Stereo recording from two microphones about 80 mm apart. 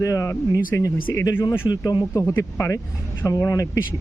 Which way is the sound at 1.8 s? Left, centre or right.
Left.